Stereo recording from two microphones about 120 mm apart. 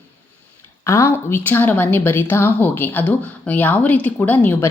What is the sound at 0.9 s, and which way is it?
Speech, 25° left (ahead or behind).